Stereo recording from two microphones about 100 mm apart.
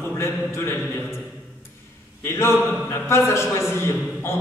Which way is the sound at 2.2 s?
25° left (ahead or behind).